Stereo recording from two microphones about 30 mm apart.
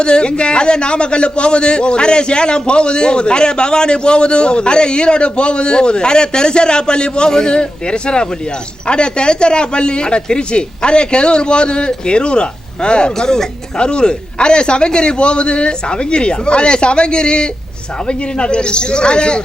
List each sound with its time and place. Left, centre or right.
0.0 s a man's voice: left
13.1 s speech: left
13.7 s a man's voice: left